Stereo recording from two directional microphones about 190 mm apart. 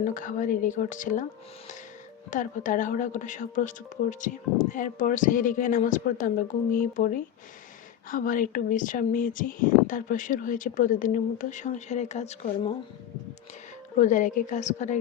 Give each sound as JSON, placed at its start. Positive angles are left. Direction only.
{"t": 0.0, "sound": "speech", "side_deg": 45}
{"t": 2.3, "sound": "speech", "side_deg": 45}
{"t": 14.0, "sound": "a woman's voice", "side_deg": 40}